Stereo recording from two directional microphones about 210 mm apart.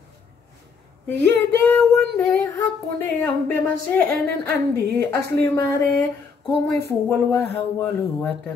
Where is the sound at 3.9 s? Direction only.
10° left (ahead or behind).